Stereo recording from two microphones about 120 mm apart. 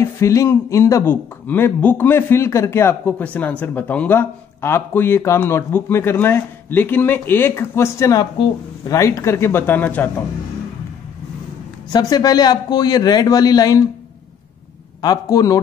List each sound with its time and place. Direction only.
0.0 s speech: 25° left (ahead or behind)
11.9 s a man's voice: 30° left (ahead or behind)
15.0 s a man's voice: 30° left (ahead or behind)